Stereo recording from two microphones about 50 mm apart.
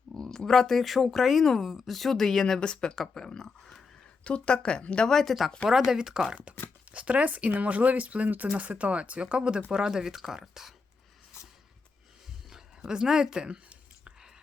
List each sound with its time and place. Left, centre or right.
0.2 s speech: centre
4.2 s speech: left
5.0 s speech: centre
5.9 s speech: centre
6.9 s speech: right; by 10.8 s centre
12.5 s a sound: centre